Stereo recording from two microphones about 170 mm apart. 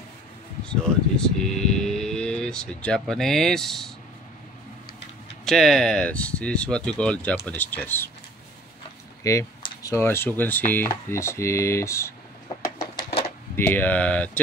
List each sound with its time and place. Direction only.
0.7 s speech: 5° left (ahead or behind)
5.4 s speech: centre (ahead or behind)
9.2 s speech: 20° left (ahead or behind)
13.6 s speech: 10° left (ahead or behind)